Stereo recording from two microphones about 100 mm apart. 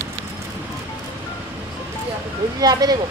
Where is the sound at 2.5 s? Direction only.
40° right (ahead or behind).